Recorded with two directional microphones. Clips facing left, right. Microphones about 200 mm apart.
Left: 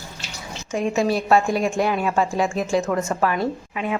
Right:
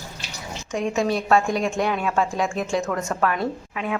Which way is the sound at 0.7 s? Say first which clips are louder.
Left 2 dB; 5° left (ahead or behind).